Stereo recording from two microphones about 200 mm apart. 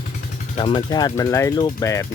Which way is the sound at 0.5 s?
25° left (ahead or behind).